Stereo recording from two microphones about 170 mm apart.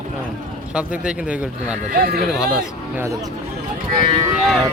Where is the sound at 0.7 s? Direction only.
5° right (ahead or behind).